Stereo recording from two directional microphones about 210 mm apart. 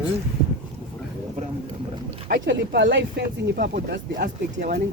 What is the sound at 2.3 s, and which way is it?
Speech, 55° right (ahead or behind).